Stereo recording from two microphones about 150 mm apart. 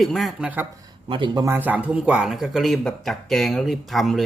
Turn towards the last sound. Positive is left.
turn(degrees=0)  # may be behind; listen again after turning